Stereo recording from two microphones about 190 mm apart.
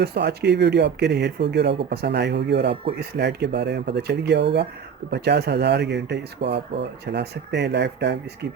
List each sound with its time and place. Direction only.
0.0 s speech: 60° right (ahead or behind)